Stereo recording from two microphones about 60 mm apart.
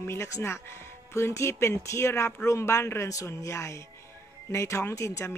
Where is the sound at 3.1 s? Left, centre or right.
Left.